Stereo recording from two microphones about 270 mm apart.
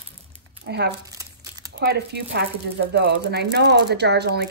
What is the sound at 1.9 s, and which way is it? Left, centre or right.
Speech, right.